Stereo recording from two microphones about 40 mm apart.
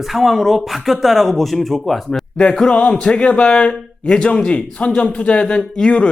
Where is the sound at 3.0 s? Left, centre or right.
Left.